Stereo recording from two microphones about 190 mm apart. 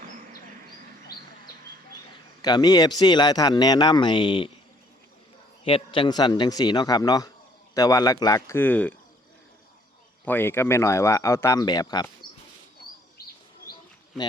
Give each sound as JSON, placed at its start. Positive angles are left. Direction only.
{"t": 2.4, "sound": "speech", "side_deg": 20}
{"t": 5.6, "sound": "speech", "side_deg": 25}
{"t": 10.2, "sound": "speech", "side_deg": 10}